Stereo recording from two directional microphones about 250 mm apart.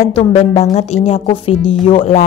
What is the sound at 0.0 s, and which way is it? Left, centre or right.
Speech, left.